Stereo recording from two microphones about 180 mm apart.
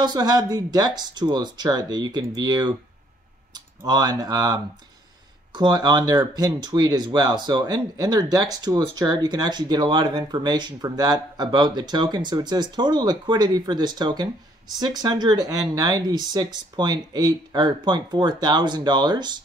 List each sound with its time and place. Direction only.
0.0 s speech: 20° right (ahead or behind)